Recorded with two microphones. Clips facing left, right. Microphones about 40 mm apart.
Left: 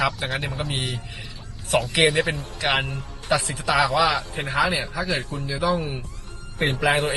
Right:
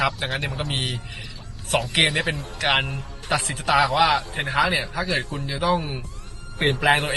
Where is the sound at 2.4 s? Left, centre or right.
Right.